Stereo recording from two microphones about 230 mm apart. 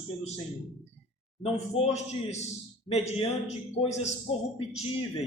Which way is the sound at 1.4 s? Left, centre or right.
Left.